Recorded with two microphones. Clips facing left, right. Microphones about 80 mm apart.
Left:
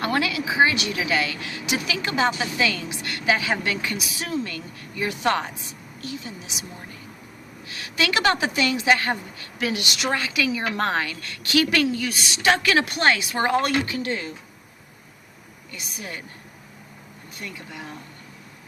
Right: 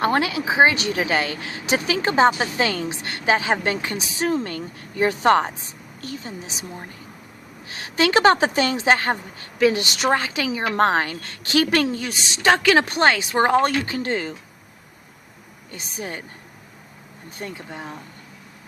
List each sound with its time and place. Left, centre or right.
0.0 s a woman's voice: right
15.7 s a woman's voice: right
17.3 s a woman's voice: right